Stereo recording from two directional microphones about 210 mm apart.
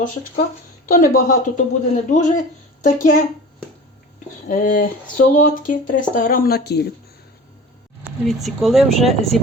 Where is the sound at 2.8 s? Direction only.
40° left (ahead or behind).